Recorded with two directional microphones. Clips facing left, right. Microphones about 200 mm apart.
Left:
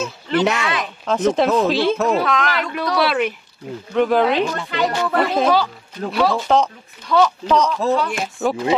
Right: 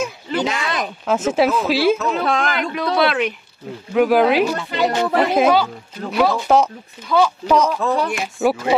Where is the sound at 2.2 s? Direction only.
30° right (ahead or behind).